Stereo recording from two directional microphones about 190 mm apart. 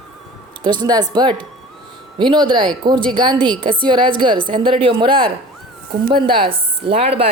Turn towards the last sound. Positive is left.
turn(degrees=-30)  # may be behind; listen again after turning